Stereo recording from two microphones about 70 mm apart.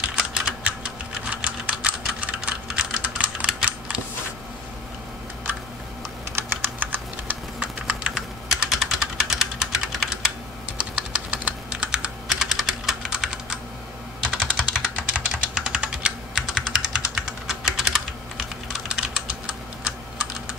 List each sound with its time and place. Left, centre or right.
0.1 s typing: centre
6.3 s typing: right
7.6 s typing: centre
10.8 s typing: centre
12.3 s computer keyboard: centre
14.5 s typing: centre